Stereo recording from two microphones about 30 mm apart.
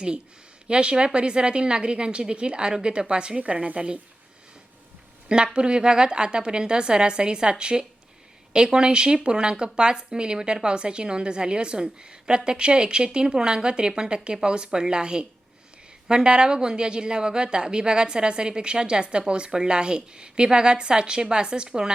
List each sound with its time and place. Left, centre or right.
0.7 s a woman's voice: right
3.4 s a woman's voice: right
5.5 s a woman's voice: right